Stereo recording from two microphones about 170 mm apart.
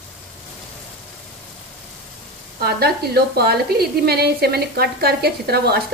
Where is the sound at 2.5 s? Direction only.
65° right (ahead or behind).